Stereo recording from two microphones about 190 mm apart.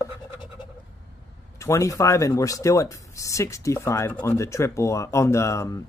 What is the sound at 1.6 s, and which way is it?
Speech, 15° left (ahead or behind).